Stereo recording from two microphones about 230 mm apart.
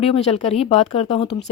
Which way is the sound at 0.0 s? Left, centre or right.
Left.